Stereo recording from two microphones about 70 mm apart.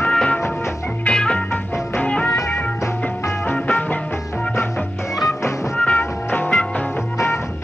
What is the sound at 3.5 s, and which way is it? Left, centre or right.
Music, left.